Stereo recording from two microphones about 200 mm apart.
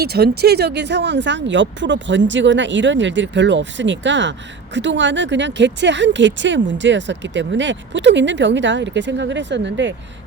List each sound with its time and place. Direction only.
0.0 s speech: 50° right (ahead or behind)